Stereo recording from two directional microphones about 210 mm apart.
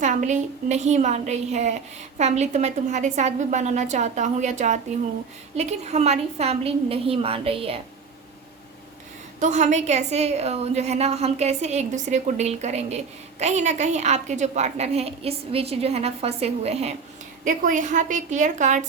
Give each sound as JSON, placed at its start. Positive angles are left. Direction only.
{"t": 0.0, "sound": "a woman's voice", "side_deg": -35}
{"t": 9.4, "sound": "a woman's voice", "side_deg": -35}
{"t": 17.4, "sound": "a woman's voice", "side_deg": -40}